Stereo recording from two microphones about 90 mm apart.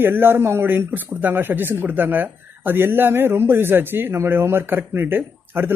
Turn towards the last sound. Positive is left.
turn(degrees=-25)  # may be behind; listen again after turning